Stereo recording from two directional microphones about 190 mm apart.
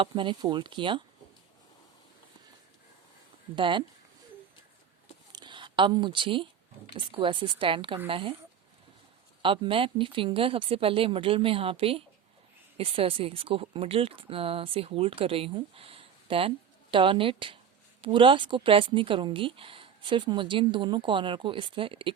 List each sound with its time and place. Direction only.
0.0 s speech: 25° right (ahead or behind)
3.5 s speech: 25° right (ahead or behind)
5.3 s a sound: 25° right (ahead or behind)
6.9 s speech: 25° right (ahead or behind)
9.4 s speech: 25° right (ahead or behind)